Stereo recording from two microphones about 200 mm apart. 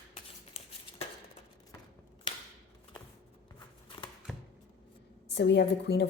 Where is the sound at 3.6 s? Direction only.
25° left (ahead or behind).